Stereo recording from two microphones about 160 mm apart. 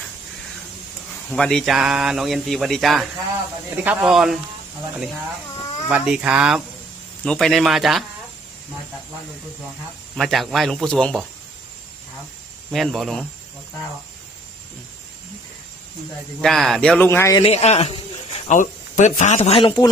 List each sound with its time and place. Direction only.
1.3 s speech: 5° left (ahead or behind)
5.9 s speech: 5° right (ahead or behind)
10.2 s speech: centre (ahead or behind)
12.7 s speech: centre (ahead or behind)
16.4 s speech: centre (ahead or behind)
17.0 s a man's voice: 15° left (ahead or behind)
17.4 s a man's voice: 40° left (ahead or behind)
18.4 s speech: 50° left (ahead or behind); by 19.9 s 30° left (ahead or behind)